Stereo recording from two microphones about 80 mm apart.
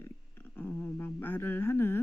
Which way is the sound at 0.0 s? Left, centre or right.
Left.